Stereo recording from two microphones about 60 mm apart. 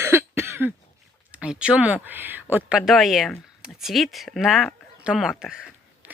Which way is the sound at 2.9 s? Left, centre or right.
Centre.